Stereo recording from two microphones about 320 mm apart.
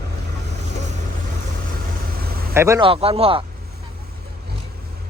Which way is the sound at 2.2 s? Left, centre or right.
Right.